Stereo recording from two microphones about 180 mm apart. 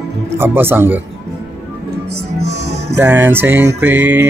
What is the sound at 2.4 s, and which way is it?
Music, 65° right (ahead or behind).